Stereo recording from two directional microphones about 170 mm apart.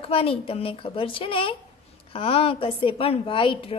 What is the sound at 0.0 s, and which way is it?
A woman's voice, 35° left (ahead or behind).